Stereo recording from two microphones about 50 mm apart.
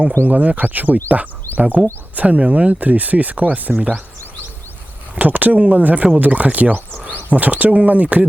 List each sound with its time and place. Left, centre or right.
0.3 s speech: right
5.2 s speech: right